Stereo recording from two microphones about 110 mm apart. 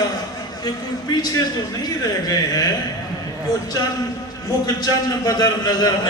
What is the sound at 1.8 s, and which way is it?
Speech, 35° left (ahead or behind).